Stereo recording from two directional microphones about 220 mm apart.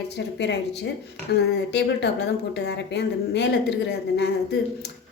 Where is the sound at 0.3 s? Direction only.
50° left (ahead or behind).